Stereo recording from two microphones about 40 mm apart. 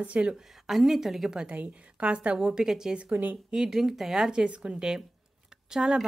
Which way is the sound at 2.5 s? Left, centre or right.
Centre.